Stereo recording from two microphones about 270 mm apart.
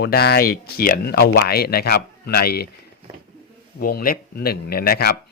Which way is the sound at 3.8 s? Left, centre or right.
Left.